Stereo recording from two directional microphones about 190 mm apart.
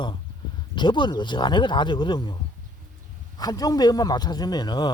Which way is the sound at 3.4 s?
20° left (ahead or behind).